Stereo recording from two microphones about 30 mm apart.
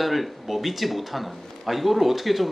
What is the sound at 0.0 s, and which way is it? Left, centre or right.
A man's voice, centre.